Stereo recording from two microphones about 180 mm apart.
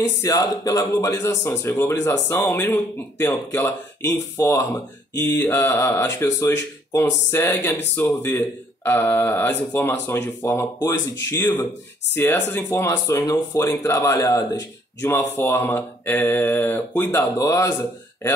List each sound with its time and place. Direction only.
0.2 s speech: 20° left (ahead or behind)